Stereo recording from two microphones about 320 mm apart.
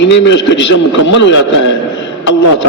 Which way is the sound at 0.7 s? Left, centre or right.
Left.